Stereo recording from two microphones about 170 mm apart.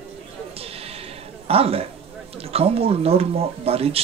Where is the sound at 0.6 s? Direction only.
35° right (ahead or behind).